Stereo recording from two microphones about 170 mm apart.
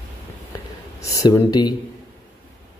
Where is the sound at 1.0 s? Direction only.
20° left (ahead or behind).